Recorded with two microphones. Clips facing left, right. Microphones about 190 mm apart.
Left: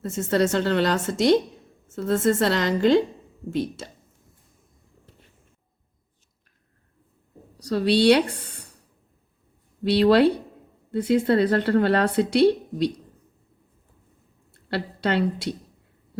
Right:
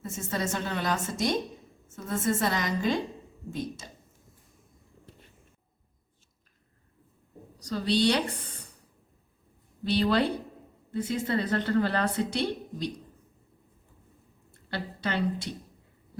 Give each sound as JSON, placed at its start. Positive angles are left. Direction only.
{"t": 0.0, "sound": "a woman's voice", "side_deg": 75}
{"t": 7.6, "sound": "a woman's voice", "side_deg": 70}
{"t": 9.8, "sound": "a woman's voice", "side_deg": 70}
{"t": 14.7, "sound": "a woman's voice", "side_deg": 70}